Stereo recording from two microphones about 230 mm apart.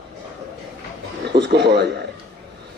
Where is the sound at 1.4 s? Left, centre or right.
Right.